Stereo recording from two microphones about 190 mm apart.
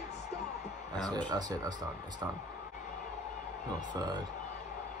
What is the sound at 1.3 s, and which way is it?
Speech, 20° right (ahead or behind).